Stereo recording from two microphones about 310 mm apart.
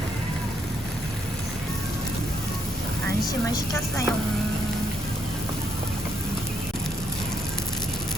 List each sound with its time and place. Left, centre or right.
3.2 s a woman's voice: centre